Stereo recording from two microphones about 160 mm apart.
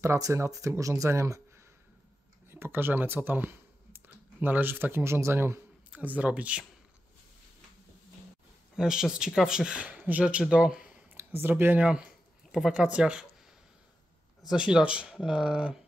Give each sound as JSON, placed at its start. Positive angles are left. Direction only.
{"t": 0.0, "sound": "speech", "side_deg": -20}
{"t": 2.5, "sound": "speech", "side_deg": -15}
{"t": 8.7, "sound": "speech", "side_deg": -5}
{"t": 14.5, "sound": "speech", "side_deg": -5}